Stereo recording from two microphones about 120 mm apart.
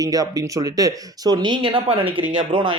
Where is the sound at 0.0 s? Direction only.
30° right (ahead or behind).